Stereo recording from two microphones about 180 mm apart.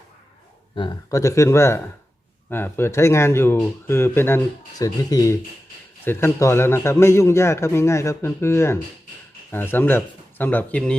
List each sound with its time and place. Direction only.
0.8 s a man's voice: 20° left (ahead or behind)